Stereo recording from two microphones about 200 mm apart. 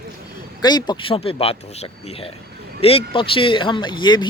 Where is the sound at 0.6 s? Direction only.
20° left (ahead or behind).